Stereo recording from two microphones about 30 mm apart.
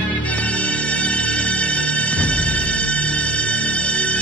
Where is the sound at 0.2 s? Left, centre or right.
Left.